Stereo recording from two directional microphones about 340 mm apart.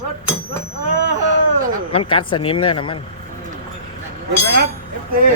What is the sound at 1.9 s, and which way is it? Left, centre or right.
Speech, centre.